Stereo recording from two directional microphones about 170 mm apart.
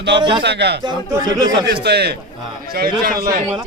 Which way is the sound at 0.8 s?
25° right (ahead or behind).